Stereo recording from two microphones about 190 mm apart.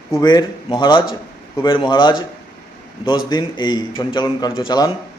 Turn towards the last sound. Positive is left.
turn(degrees=25)  # may be behind; listen again after turning